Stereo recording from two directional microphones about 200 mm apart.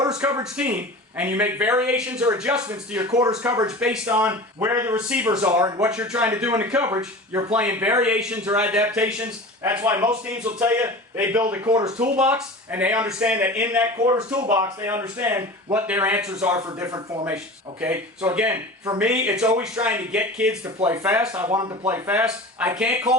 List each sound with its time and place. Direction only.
0.5 s a man's voice: 5° right (ahead or behind)
3.1 s a man's voice: 20° right (ahead or behind)
5.6 s speech: 20° right (ahead or behind)
5.9 s a man's voice: 5° right (ahead or behind)
16.6 s a man's voice: 15° right (ahead or behind)
17.3 s a man's voice: 5° right (ahead or behind)
21.4 s speech: 20° right (ahead or behind)
21.8 s a man's voice: 10° right (ahead or behind)